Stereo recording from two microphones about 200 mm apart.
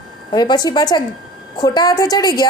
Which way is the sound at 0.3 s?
20° left (ahead or behind).